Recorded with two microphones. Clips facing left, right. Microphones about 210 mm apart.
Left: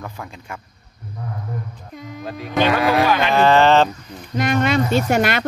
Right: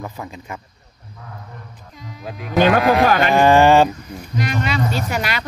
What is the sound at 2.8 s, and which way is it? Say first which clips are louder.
Speech: right 2 dB; centre (ahead or behind).